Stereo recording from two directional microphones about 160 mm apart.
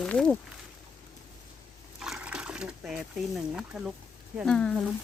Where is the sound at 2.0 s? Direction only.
5° right (ahead or behind).